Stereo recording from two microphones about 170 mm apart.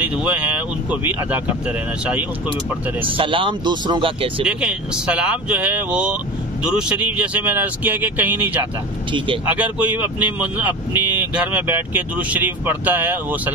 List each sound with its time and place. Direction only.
0.0 s speech: 5° right (ahead or behind)
3.0 s speech: 30° right (ahead or behind)
4.5 s speech: 5° right (ahead or behind)